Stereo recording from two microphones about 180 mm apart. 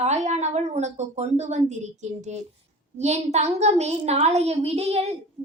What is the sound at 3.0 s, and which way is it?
A child's voice, 40° right (ahead or behind).